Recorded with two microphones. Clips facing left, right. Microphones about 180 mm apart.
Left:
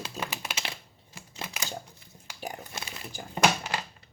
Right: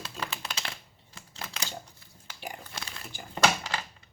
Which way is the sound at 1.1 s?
15° left (ahead or behind).